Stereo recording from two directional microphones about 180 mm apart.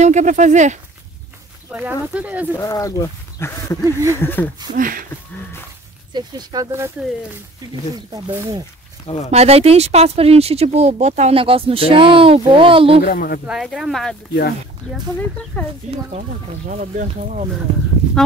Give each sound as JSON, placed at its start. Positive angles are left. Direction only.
{"t": 0.0, "sound": "speech", "side_deg": -40}
{"t": 1.7, "sound": "speech", "side_deg": -10}
{"t": 2.5, "sound": "speech", "side_deg": 15}
{"t": 3.8, "sound": "speech", "side_deg": -15}
{"t": 4.2, "sound": "speech", "side_deg": 10}
{"t": 4.7, "sound": "speech", "side_deg": -50}
{"t": 6.1, "sound": "speech", "side_deg": -20}
{"t": 7.9, "sound": "speech", "side_deg": -20}
{"t": 9.0, "sound": "speech", "side_deg": 30}
{"t": 9.3, "sound": "speech", "side_deg": -35}
{"t": 13.0, "sound": "speech", "side_deg": 55}
{"t": 13.5, "sound": "speech", "side_deg": 0}
{"t": 16.2, "sound": "speech", "side_deg": -45}